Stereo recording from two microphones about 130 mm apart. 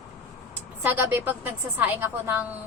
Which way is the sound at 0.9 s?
15° right (ahead or behind).